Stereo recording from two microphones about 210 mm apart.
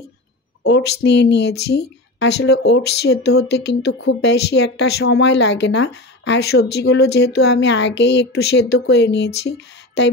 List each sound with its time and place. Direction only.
0.7 s speech: 55° left (ahead or behind)